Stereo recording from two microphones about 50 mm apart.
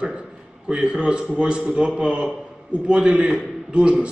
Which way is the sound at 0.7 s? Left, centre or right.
Right.